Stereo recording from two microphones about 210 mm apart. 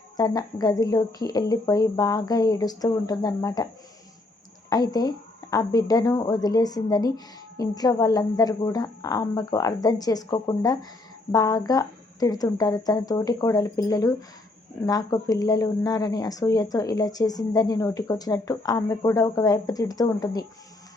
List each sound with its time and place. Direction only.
0.2 s speech: 20° left (ahead or behind)
4.7 s speech: 20° left (ahead or behind)